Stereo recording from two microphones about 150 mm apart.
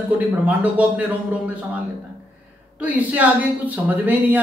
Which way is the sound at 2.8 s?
10° right (ahead or behind).